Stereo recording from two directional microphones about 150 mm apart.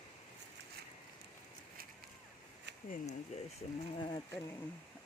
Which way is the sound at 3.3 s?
50° left (ahead or behind).